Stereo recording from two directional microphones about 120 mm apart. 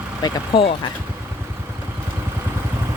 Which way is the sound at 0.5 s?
45° left (ahead or behind).